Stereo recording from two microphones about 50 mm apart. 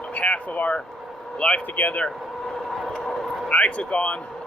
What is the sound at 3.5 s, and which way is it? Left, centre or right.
Speech, left.